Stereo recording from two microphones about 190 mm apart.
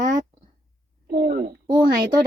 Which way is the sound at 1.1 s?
55° right (ahead or behind).